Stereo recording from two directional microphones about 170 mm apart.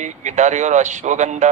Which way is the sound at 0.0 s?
45° right (ahead or behind).